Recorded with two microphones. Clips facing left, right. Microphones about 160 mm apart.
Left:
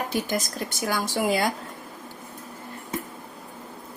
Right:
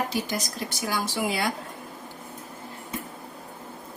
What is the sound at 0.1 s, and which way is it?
Speech, 50° left (ahead or behind).